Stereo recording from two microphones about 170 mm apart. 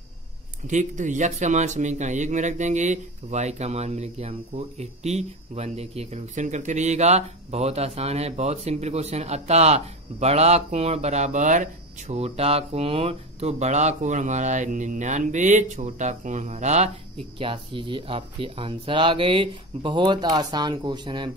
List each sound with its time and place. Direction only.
0.7 s speech: 45° right (ahead or behind)
17.4 s speech: 30° right (ahead or behind)